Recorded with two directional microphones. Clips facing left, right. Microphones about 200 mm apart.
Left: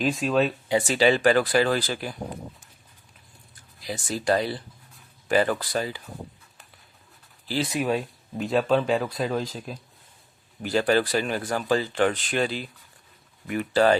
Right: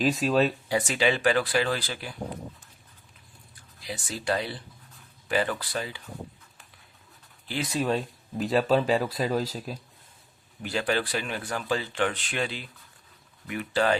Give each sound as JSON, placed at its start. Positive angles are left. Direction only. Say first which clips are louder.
{"t": 0.0, "sound": "speech", "louder": "even", "side_deg": 0}
{"t": 0.7, "sound": "speech", "louder": "left 4 dB", "side_deg": 30}
{"t": 3.8, "sound": "speech", "louder": "left 5 dB", "side_deg": 45}
{"t": 7.4, "sound": "speech", "louder": "left 5 dB", "side_deg": 35}
{"t": 7.7, "sound": "speech", "louder": "right 2 dB", "side_deg": 10}
{"t": 10.6, "sound": "speech", "louder": "left 6 dB", "side_deg": 40}